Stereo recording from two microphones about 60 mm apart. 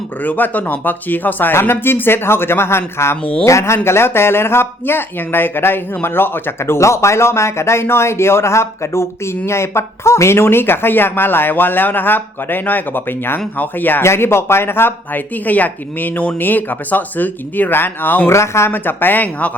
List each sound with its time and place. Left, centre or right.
0.2 s speech: left
3.4 s speech: left
14.0 s speech: left
18.3 s speech: left
18.7 s speech: left